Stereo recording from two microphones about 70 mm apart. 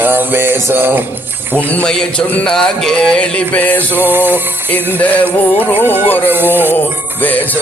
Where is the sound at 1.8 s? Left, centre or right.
Centre.